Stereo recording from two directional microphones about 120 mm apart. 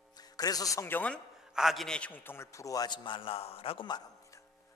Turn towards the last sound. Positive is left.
turn(degrees=30)  # may be behind; listen again after turning